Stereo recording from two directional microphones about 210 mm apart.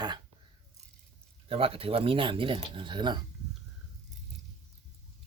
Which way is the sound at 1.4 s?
25° right (ahead or behind).